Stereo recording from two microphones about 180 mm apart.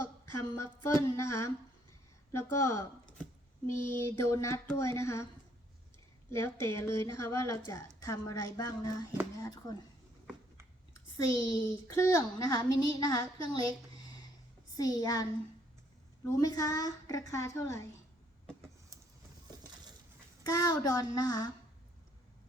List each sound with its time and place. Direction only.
0.3 s child singing: 15° left (ahead or behind)
6.3 s child singing: 15° left (ahead or behind)
8.0 s speech: 20° left (ahead or behind)
11.4 s speech: 20° left (ahead or behind)
14.8 s speech: 20° left (ahead or behind)
20.4 s speech: 20° left (ahead or behind)